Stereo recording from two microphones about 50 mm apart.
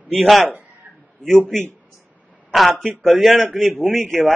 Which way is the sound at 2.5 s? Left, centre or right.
Centre.